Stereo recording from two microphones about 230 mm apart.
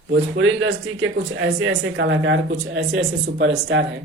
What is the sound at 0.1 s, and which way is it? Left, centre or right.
Speech, right.